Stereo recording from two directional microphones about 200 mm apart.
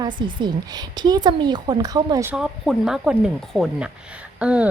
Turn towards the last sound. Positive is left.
turn(degrees=-5)  # may be behind; listen again after turning